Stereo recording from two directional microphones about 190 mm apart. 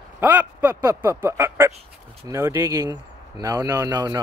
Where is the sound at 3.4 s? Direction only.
20° right (ahead or behind).